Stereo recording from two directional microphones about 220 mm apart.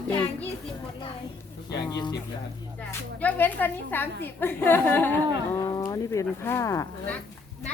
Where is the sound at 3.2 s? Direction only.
10° left (ahead or behind).